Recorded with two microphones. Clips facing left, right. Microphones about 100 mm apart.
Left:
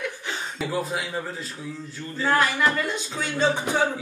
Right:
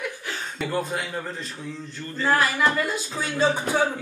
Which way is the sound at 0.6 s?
5° left (ahead or behind).